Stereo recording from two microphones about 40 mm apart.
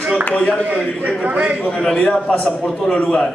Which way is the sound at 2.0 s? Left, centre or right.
Left.